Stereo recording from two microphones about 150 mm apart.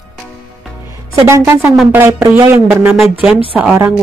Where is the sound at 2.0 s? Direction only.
20° right (ahead or behind).